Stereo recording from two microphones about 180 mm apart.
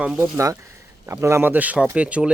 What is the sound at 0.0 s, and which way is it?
Speech, 10° right (ahead or behind).